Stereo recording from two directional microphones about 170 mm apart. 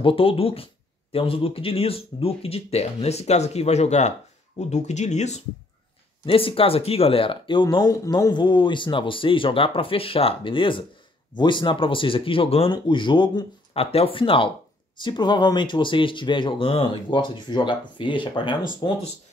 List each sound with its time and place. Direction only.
0.0 s speech: 35° left (ahead or behind)